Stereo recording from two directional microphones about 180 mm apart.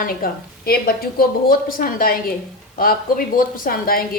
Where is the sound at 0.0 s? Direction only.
55° left (ahead or behind).